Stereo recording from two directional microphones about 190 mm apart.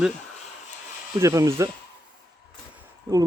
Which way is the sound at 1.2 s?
15° right (ahead or behind).